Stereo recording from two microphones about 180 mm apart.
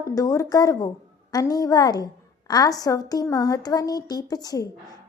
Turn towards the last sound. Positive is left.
turn(degrees=20)  # may be behind; listen again after turning